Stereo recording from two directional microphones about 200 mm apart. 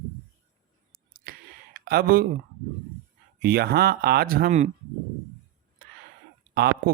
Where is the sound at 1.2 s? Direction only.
50° right (ahead or behind).